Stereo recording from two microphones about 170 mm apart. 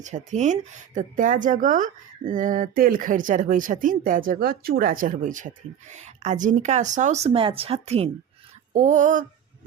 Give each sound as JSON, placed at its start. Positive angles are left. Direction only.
{"t": 0.0, "sound": "speech", "side_deg": -45}
{"t": 8.7, "sound": "speech", "side_deg": -45}